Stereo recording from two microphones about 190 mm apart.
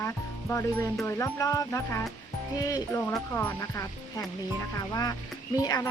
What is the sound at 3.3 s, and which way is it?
Speech, 10° left (ahead or behind).